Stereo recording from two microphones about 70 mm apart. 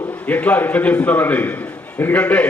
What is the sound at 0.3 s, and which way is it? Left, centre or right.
A man's voice, left.